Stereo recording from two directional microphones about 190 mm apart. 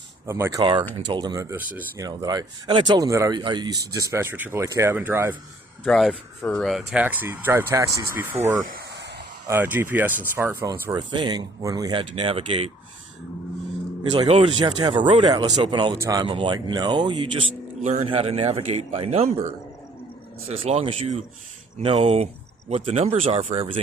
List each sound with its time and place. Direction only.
0.3 s speech: 15° right (ahead or behind)
0.6 s speech: 25° right (ahead or behind)
5.8 s speech: centre (ahead or behind)
8.6 s a sound: 55° right (ahead or behind)
9.5 s speech: 10° right (ahead or behind)
10.7 s speech: 20° right (ahead or behind)
14.1 s a man's voice: 25° right (ahead or behind)
20.5 s a man's voice: 30° right (ahead or behind)